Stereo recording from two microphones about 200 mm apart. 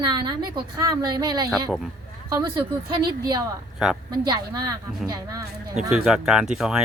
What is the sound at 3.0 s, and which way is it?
Speech, 20° right (ahead or behind).